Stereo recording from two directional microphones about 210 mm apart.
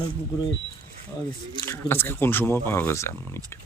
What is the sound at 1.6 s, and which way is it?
Speech, 10° left (ahead or behind).